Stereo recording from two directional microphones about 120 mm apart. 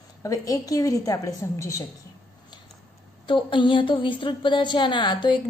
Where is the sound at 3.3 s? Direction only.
45° left (ahead or behind).